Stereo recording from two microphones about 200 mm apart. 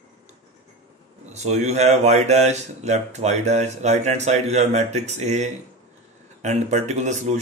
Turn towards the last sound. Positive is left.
turn(degrees=-35)  # may be behind; listen again after turning